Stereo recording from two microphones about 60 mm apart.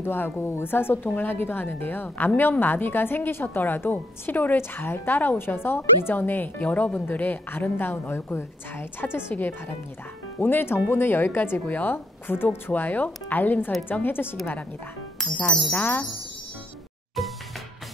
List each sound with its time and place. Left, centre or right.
0.0 s a woman's voice: left
15.1 s music: centre
15.7 s a woman's voice: left
17.2 s music: centre